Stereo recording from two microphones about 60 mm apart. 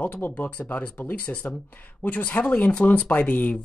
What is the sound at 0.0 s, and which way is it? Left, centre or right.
Speech, left.